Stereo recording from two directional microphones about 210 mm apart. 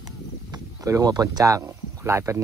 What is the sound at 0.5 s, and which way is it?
Speech, 15° right (ahead or behind).